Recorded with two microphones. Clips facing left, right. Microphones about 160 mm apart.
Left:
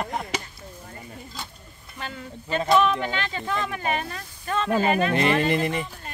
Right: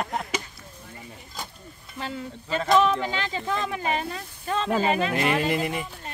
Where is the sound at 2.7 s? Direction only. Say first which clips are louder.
Even; 20° right (ahead or behind).